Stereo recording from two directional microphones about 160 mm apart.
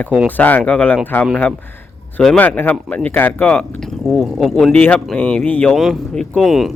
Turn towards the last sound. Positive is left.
turn(degrees=0)  # may be behind; listen again after turning